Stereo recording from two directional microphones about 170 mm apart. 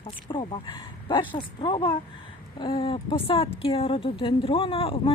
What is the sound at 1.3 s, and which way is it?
Speech, 30° left (ahead or behind).